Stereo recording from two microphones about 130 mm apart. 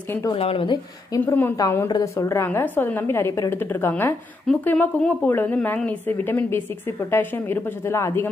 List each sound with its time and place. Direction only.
0.3 s a woman's voice: 45° left (ahead or behind)
1.2 s a woman's voice: 15° left (ahead or behind)